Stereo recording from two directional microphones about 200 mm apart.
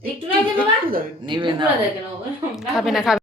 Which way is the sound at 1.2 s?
25° right (ahead or behind).